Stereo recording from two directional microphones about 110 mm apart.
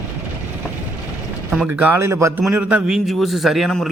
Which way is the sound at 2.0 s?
25° right (ahead or behind).